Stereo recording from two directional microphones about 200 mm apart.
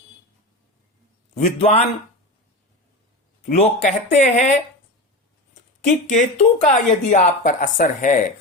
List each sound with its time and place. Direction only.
1.5 s speech: 30° left (ahead or behind)
3.4 s speech: 35° left (ahead or behind)
6.1 s speech: 35° left (ahead or behind)